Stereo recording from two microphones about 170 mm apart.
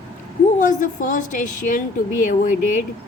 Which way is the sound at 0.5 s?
50° left (ahead or behind).